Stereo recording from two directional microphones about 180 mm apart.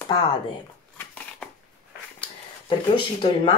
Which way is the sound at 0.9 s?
5° left (ahead or behind).